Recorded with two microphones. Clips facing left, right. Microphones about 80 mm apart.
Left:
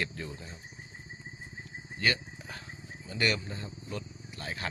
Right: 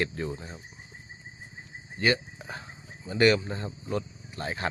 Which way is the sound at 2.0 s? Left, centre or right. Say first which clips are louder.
Right 5 dB; right.